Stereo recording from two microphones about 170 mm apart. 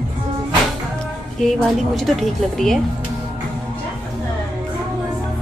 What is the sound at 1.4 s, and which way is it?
A woman's voice, 5° left (ahead or behind).